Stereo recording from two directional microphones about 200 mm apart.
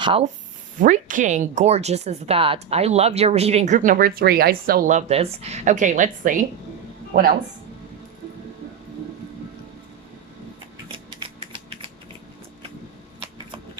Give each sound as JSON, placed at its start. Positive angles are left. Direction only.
{"t": 0.0, "sound": "speech", "side_deg": -25}
{"t": 0.8, "sound": "speech", "side_deg": -40}